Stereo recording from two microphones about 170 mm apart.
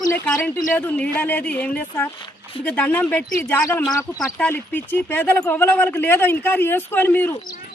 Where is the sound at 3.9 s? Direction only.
20° left (ahead or behind).